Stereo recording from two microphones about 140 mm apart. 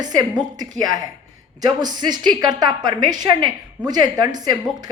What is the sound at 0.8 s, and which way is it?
A woman's voice, 25° right (ahead or behind).